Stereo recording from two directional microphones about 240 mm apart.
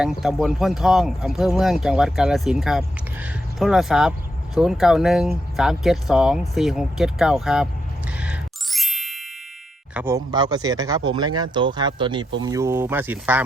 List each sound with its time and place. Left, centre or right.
0.0 s speech: centre
8.2 s music: centre
9.9 s speech: centre